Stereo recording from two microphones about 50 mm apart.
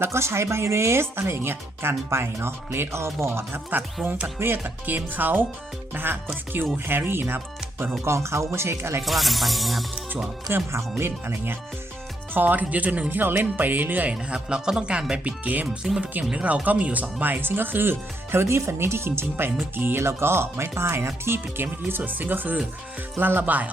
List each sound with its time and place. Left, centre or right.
0.0 s speech: right
1.4 s speech: right
4.0 s speech: centre
4.4 s speech: right
8.0 s speech: right
9.0 s speech: centre
10.5 s speech: right
12.3 s speech: right
13.1 s speech: right
14.1 s speech: centre
15.8 s speech: centre
16.3 s speech: right
19.7 s speech: right